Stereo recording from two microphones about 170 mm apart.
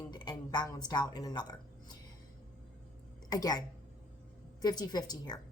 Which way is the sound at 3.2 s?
20° left (ahead or behind).